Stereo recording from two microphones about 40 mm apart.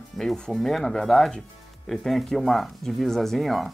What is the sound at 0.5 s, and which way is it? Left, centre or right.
Speech, centre.